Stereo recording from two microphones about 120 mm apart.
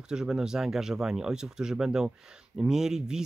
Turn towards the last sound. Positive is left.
turn(degrees=-5)  # may be behind; listen again after turning